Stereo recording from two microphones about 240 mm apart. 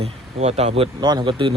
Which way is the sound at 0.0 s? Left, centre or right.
Right.